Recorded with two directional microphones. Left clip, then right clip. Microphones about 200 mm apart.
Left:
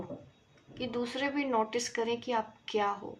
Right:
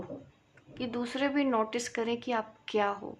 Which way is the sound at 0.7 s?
30° right (ahead or behind).